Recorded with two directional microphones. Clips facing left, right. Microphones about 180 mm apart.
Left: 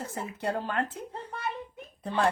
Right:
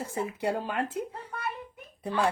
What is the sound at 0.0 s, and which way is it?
Speech, 10° right (ahead or behind).